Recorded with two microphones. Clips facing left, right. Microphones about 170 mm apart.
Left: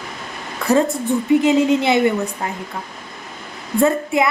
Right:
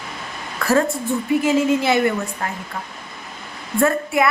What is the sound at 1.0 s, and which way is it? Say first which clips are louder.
A woman's voice: left 4 dB; 20° left (ahead or behind).